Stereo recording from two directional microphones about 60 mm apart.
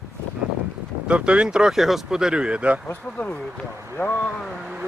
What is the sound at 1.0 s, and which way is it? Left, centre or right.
Speech, centre.